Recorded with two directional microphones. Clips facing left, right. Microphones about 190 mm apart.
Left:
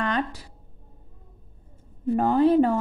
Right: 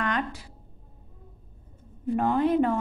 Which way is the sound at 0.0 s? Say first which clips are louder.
Left 2 dB; 35° left (ahead or behind).